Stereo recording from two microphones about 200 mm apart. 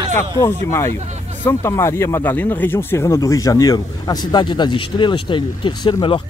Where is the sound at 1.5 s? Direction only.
15° left (ahead or behind).